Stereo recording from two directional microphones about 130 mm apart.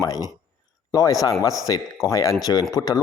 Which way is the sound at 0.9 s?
25° left (ahead or behind).